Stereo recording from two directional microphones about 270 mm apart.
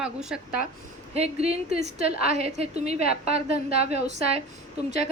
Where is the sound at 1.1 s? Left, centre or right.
Right.